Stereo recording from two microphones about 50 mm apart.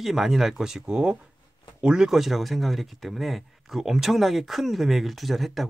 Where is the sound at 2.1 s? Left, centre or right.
Centre.